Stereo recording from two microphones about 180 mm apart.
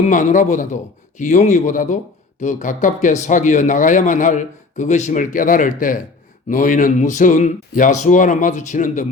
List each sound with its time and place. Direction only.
0.1 s speech: 45° left (ahead or behind)